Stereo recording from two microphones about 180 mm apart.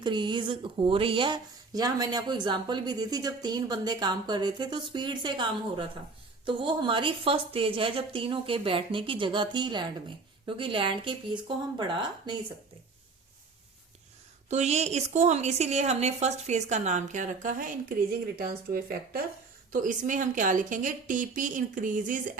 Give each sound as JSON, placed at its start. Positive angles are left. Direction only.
{"t": 0.0, "sound": "speech", "side_deg": -25}
{"t": 14.5, "sound": "a woman's voice", "side_deg": -40}